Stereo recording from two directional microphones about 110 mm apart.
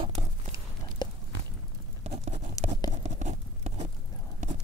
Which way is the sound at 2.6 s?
35° left (ahead or behind).